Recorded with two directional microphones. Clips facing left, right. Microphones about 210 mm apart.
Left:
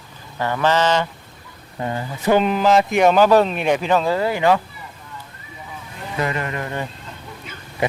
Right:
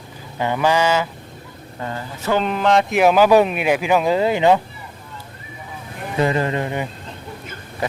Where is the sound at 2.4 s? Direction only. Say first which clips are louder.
Left 1 dB; 5° left (ahead or behind); by 4.6 s 20° right (ahead or behind).